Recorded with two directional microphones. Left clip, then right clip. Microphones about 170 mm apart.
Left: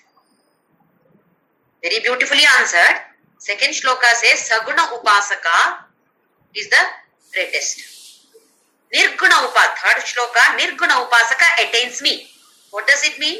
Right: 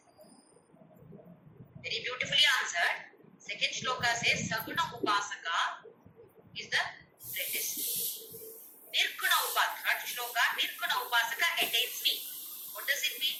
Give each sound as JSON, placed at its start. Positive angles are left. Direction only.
{"t": 1.8, "sound": "a woman's voice", "side_deg": 65}
{"t": 8.9, "sound": "a woman's voice", "side_deg": 65}